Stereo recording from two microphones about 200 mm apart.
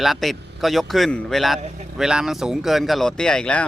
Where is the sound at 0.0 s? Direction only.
Centre (ahead or behind).